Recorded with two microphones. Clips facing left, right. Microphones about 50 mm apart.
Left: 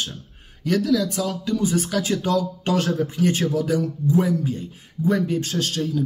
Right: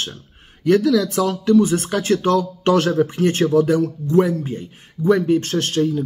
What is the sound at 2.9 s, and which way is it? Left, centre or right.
Speech, right.